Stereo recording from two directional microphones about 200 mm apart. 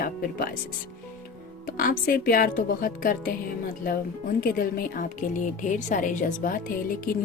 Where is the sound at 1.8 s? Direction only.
45° left (ahead or behind).